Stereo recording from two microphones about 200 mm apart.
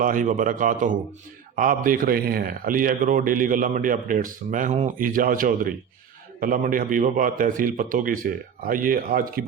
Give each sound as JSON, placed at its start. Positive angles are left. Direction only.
{"t": 0.0, "sound": "a man's voice", "side_deg": -40}